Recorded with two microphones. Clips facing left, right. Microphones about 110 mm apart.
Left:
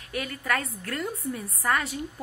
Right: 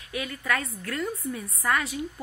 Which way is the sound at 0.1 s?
45° left (ahead or behind).